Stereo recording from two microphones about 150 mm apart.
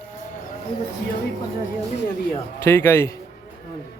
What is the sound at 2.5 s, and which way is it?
Speech, 15° left (ahead or behind).